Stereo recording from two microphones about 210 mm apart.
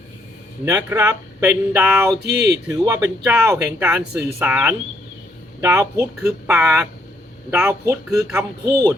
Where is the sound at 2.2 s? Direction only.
50° right (ahead or behind).